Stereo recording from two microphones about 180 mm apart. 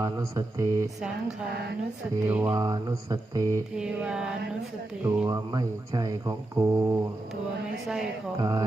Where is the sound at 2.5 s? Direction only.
20° right (ahead or behind).